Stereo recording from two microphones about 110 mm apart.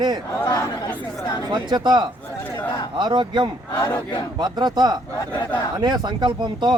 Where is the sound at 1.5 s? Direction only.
40° right (ahead or behind).